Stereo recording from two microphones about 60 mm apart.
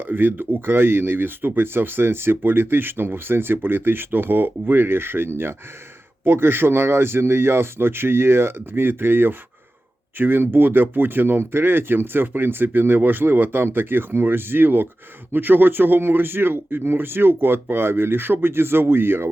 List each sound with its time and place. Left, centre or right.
0.0 s speech: right